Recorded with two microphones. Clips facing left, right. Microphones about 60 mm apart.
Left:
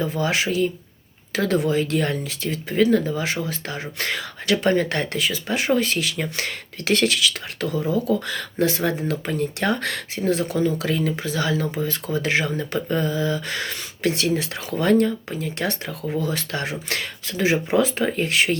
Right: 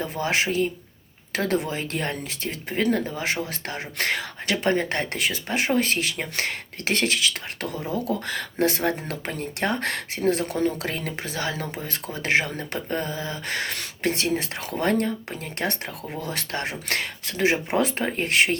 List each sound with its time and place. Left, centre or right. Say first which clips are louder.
0.0 s speech: left 2 dB; right
3.5 s speech: left 2 dB; right
4.4 s speech: left 4 dB; right
5.1 s speech: left 2 dB; right
13.5 s speech: even; right
14.0 s speech: left 3 dB; right